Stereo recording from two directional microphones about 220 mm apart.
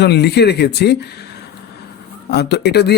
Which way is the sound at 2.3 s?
50° left (ahead or behind).